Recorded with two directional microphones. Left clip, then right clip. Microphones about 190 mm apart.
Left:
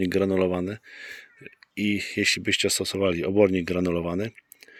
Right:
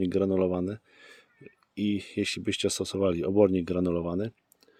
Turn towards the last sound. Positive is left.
turn(degrees=0)  # may be behind; listen again after turning